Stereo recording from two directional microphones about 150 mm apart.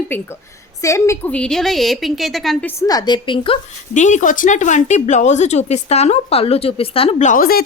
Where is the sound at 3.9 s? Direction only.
55° left (ahead or behind).